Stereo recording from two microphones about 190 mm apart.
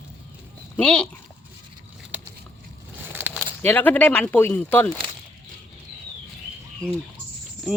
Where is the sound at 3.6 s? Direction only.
10° left (ahead or behind).